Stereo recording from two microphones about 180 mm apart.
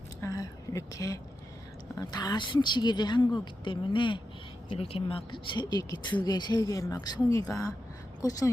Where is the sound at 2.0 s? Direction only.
20° left (ahead or behind).